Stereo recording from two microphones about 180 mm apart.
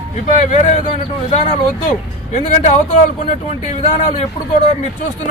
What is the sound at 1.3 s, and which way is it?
A man's voice, 40° left (ahead or behind).